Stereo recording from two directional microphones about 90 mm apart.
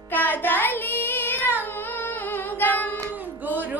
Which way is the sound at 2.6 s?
20° left (ahead or behind).